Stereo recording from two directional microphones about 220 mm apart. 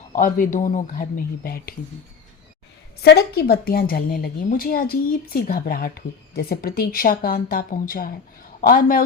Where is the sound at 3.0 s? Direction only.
45° left (ahead or behind).